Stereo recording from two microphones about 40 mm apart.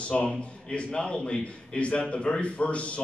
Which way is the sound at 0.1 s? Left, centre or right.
Centre.